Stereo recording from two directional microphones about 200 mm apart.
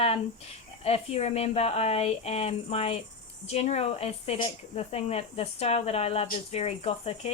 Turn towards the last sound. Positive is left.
turn(degrees=30)  # may be behind; listen again after turning